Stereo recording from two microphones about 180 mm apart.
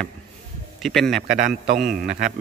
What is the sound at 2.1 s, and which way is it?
Mantra, 55° right (ahead or behind).